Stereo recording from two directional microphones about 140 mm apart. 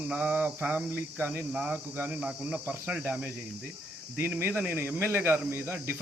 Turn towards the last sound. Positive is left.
turn(degrees=-15)  # may be behind; listen again after turning